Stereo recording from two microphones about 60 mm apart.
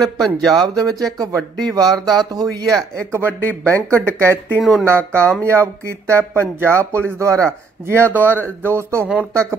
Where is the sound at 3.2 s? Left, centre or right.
Left.